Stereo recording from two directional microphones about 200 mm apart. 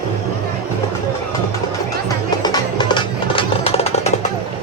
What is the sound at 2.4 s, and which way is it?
Music, 20° left (ahead or behind).